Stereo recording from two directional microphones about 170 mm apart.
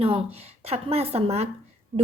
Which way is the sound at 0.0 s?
35° right (ahead or behind).